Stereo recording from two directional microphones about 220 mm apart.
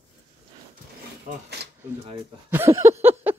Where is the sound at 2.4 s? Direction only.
10° right (ahead or behind).